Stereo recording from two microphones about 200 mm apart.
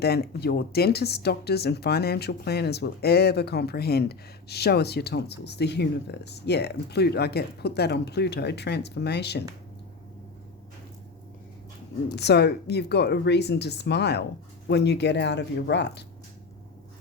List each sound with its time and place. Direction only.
0.0 s speech: 55° left (ahead or behind)
12.1 s speech: 55° left (ahead or behind)